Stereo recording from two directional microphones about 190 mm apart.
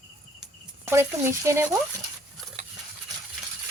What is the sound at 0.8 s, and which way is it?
Speech, 10° right (ahead or behind).